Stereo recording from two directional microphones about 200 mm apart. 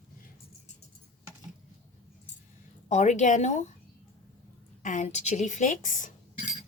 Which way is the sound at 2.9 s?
35° left (ahead or behind).